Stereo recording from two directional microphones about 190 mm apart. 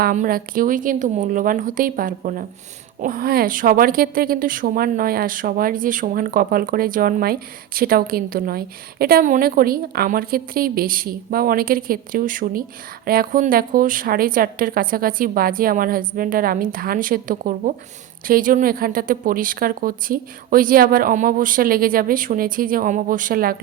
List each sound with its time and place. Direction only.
0.0 s speech: 45° right (ahead or behind)